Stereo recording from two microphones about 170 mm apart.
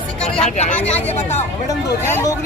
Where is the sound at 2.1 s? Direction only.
15° left (ahead or behind).